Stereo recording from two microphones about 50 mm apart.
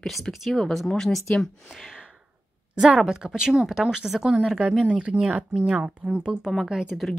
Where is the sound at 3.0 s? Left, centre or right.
Centre.